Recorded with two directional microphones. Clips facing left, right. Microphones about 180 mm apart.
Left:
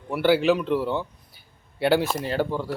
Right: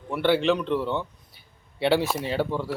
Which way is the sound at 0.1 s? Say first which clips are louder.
Left 2 dB; 5° left (ahead or behind).